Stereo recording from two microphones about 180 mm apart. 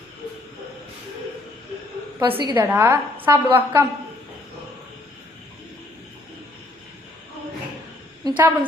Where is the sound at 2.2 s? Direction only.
25° right (ahead or behind).